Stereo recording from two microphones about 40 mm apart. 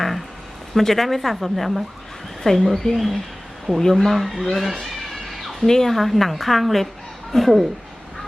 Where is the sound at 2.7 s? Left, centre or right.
Centre.